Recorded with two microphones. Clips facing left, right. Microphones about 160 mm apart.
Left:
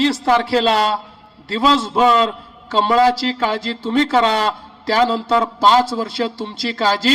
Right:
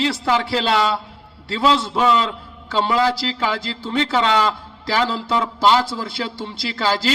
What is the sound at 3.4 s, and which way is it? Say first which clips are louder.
A man's voice: left 3 dB; 40° left (ahead or behind).